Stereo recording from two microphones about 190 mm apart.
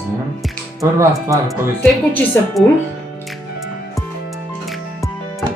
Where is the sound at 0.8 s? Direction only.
15° right (ahead or behind).